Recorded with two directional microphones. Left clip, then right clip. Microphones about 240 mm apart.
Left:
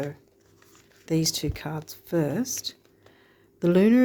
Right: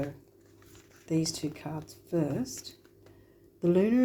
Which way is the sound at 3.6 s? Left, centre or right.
Left.